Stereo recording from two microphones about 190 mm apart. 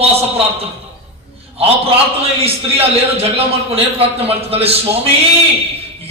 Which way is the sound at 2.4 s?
30° right (ahead or behind).